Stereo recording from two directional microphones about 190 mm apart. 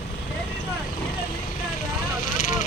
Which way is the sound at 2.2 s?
45° left (ahead or behind).